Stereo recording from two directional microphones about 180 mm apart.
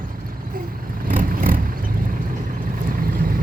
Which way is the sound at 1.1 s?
50° right (ahead or behind).